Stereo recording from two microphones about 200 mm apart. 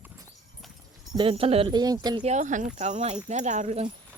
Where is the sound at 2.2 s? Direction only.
35° right (ahead or behind).